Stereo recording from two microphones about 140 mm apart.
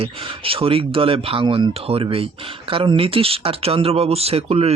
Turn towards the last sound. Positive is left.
turn(degrees=-45)  # may be behind; listen again after turning